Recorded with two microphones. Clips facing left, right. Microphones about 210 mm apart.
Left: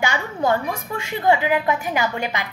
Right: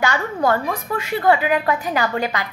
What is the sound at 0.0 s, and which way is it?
A woman's voice, 15° left (ahead or behind).